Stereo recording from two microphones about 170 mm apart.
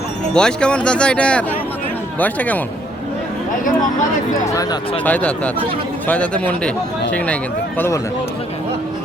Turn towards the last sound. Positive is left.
turn(degrees=15)  # may be behind; listen again after turning